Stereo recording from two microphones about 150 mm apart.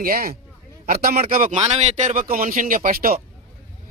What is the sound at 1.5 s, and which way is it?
Speech, 45° right (ahead or behind).